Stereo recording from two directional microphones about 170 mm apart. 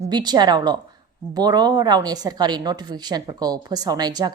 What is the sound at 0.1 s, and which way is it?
A woman's voice, 25° right (ahead or behind).